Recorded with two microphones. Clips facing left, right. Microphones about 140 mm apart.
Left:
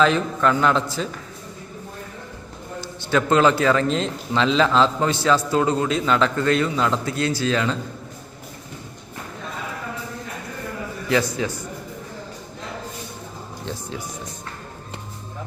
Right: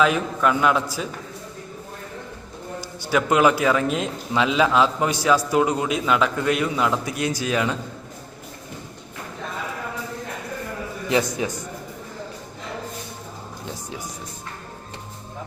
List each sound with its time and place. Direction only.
0.0 s a man's voice: 10° right (ahead or behind)
2.8 s a man's voice: 10° right (ahead or behind)
11.1 s a man's voice: 20° right (ahead or behind)